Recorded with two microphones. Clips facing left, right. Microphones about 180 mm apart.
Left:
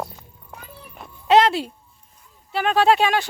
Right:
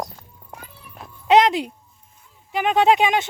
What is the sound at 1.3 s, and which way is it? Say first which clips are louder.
Speech: even; 15° right (ahead or behind).